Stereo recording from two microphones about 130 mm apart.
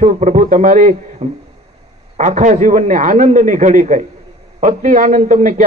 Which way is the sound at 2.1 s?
70° right (ahead or behind).